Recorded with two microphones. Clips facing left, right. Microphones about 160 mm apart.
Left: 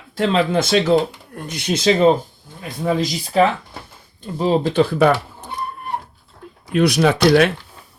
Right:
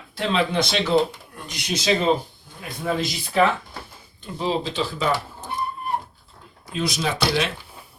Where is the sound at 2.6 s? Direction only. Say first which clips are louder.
Left 5 dB; 35° left (ahead or behind); by 5.2 s 60° left (ahead or behind).